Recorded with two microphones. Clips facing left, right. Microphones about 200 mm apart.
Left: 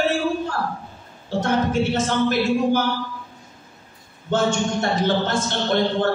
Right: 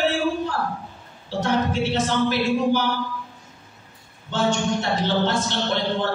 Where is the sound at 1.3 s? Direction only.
45° left (ahead or behind).